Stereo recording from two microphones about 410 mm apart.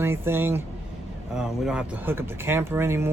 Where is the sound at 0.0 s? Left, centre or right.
Centre.